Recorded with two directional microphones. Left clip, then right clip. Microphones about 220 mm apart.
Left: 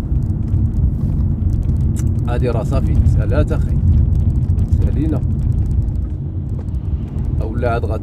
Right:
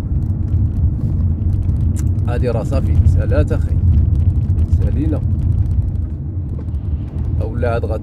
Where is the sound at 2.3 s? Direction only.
20° right (ahead or behind).